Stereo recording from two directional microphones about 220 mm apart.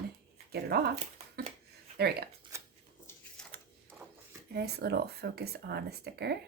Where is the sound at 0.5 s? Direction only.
45° right (ahead or behind).